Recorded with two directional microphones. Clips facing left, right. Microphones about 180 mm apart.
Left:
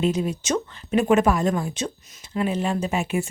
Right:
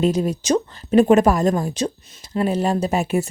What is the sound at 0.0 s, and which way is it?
Speech, 40° right (ahead or behind).